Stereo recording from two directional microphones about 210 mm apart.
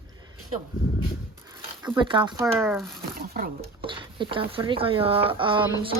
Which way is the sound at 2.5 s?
10° right (ahead or behind).